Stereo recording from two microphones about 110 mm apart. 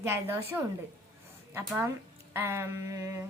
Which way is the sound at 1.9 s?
20° right (ahead or behind).